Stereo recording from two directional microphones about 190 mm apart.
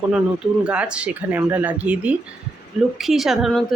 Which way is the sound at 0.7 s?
5° right (ahead or behind).